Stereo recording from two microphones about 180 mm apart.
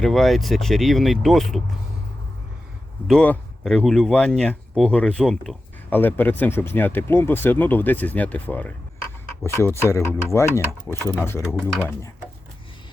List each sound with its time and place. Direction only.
0.0 s speech: centre (ahead or behind)
3.1 s speech: 5° left (ahead or behind)